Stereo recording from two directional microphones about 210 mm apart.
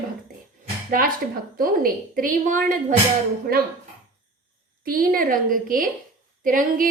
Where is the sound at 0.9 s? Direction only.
40° right (ahead or behind).